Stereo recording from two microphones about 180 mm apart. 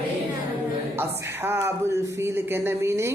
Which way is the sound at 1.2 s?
10° right (ahead or behind).